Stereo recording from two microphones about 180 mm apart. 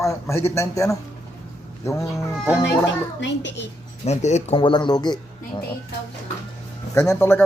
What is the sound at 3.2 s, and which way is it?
Speech, 80° left.